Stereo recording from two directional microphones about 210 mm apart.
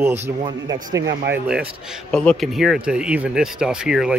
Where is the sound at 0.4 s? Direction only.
20° right (ahead or behind).